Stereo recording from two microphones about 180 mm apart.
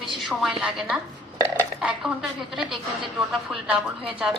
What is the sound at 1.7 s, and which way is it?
A woman's voice, 5° right (ahead or behind).